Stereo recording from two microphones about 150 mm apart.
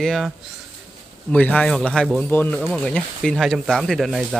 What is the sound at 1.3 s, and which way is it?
Speech, 10° left (ahead or behind).